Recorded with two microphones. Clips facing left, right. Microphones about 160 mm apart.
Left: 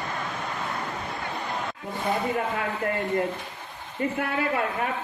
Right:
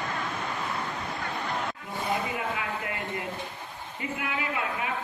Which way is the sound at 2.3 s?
45° left (ahead or behind).